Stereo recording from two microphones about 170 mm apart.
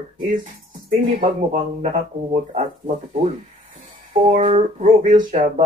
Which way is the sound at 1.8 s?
45° right (ahead or behind).